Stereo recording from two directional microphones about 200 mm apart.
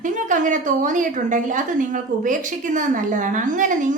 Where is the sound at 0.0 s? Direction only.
40° right (ahead or behind).